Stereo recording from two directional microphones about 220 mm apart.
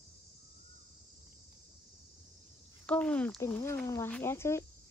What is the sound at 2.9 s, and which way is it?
Speech, 5° left (ahead or behind).